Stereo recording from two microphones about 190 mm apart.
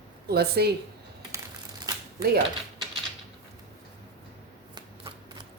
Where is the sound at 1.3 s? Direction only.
20° right (ahead or behind).